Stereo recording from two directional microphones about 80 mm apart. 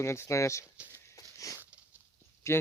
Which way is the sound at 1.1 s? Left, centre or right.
Left.